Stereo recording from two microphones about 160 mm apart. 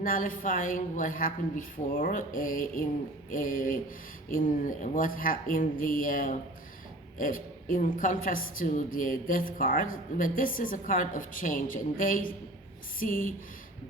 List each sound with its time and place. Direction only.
0.0 s a woman's voice: 60° left (ahead or behind)